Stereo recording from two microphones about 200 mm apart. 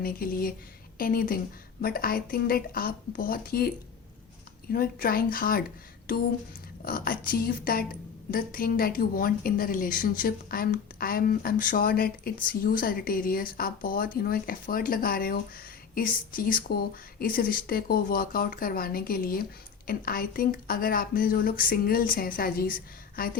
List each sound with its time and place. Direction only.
0.0 s a woman's voice: 45° left (ahead or behind)
4.7 s a woman's voice: 50° left (ahead or behind)